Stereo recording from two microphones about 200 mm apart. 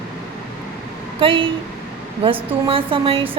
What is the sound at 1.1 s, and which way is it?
A woman's voice, 25° right (ahead or behind).